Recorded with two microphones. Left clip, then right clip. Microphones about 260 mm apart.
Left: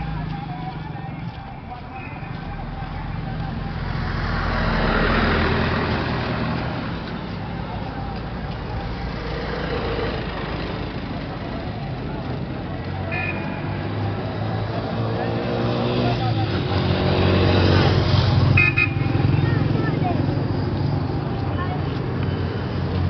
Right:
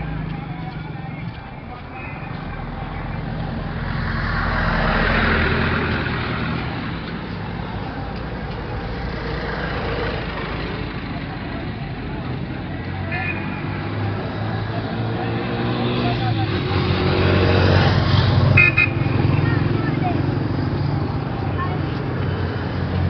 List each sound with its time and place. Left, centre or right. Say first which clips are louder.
4.2 s vehicle: right 2 dB; centre
4.6 s vehicle: even; left
9.8 s vehicle: left 1 dB; left
13.1 s vehicle: right 1 dB; left
15.2 s vehicle: left 1 dB; left
18.4 s vehicle: right 4 dB; left